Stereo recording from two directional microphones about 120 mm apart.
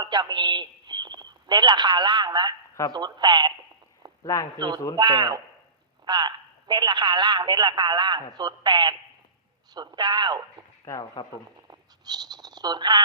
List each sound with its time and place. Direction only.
0.0 s a man's voice: 35° right (ahead or behind)
4.2 s speech: 30° left (ahead or behind)
4.5 s speech: 40° right (ahead or behind)
10.8 s speech: 30° left (ahead or behind)
11.7 s a sound: 35° right (ahead or behind)